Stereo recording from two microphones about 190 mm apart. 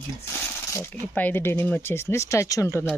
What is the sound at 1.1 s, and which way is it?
Speech, 10° left (ahead or behind).